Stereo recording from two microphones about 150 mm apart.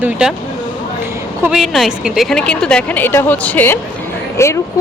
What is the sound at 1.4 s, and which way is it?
A woman's voice, 5° right (ahead or behind).